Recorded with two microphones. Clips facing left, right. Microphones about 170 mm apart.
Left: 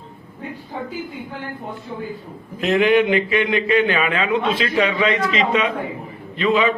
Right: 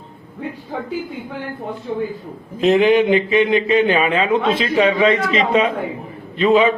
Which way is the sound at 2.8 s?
25° right (ahead or behind).